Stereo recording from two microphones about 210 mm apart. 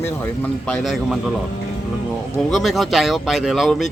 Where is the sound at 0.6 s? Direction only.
Centre (ahead or behind).